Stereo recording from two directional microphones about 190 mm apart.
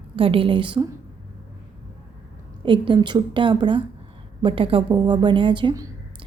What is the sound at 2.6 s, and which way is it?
A woman's voice, 25° right (ahead or behind).